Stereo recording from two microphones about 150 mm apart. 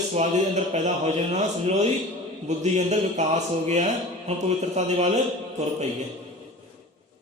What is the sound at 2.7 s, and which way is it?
Mantra, 50° right (ahead or behind).